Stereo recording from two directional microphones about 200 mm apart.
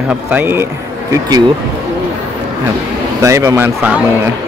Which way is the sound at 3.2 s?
15° right (ahead or behind).